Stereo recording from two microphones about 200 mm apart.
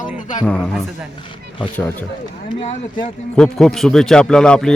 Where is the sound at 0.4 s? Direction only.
5° left (ahead or behind).